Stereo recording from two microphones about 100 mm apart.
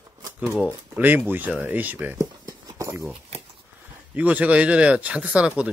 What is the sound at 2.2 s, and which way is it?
Clip-clop, 35° right (ahead or behind).